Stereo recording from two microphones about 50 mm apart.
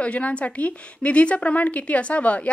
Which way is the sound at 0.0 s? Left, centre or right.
Left.